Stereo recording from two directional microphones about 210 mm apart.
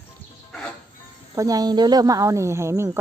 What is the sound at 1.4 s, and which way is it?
Speech, 15° right (ahead or behind).